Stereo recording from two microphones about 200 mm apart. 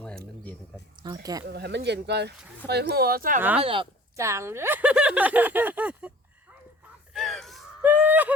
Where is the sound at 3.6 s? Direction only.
25° right (ahead or behind).